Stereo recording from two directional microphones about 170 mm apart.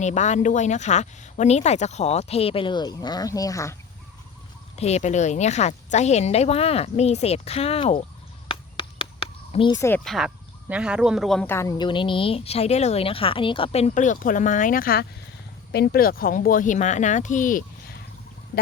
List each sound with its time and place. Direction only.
0.0 s speech: 45° left (ahead or behind); by 3.8 s 20° left (ahead or behind)
4.8 s speech: 40° left (ahead or behind)
8.4 s a sound: 30° left (ahead or behind)
9.5 s speech: 30° left (ahead or behind)
9.7 s a woman's voice: 15° left (ahead or behind)
10.0 s speech: centre (ahead or behind)
11.5 s a woman's voice: 20° left (ahead or behind)
11.9 s speech: 30° left (ahead or behind); by 17.9 s 50° left (ahead or behind)